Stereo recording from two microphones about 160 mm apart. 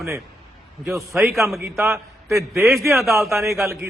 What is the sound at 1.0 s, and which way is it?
A man's voice, centre (ahead or behind).